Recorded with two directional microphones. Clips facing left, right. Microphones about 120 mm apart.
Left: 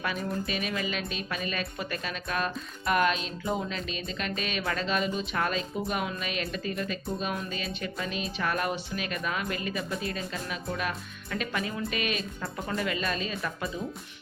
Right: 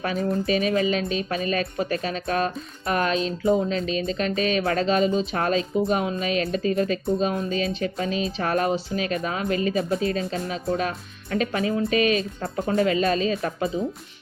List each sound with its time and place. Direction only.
0.0 s speech: 35° right (ahead or behind)
12.8 s speech: 40° right (ahead or behind)